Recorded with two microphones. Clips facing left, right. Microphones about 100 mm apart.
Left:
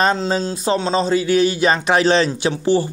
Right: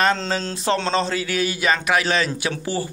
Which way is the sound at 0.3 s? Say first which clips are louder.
Left 3 dB; 15° left (ahead or behind).